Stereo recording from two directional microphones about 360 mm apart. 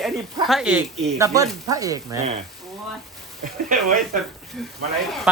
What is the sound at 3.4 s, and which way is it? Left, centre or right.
Speech, right.